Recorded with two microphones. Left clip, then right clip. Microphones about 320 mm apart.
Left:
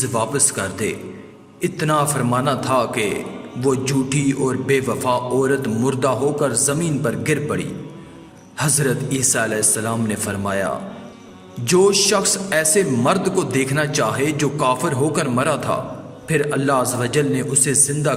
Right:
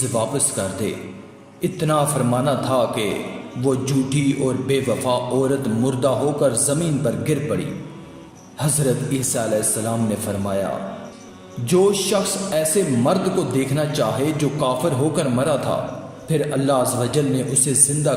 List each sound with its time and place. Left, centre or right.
0.2 s a man's voice: left
8.5 s a man's voice: left
11.6 s a man's voice: left